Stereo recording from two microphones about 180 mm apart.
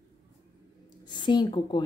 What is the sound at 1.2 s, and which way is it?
Speech, 25° left (ahead or behind).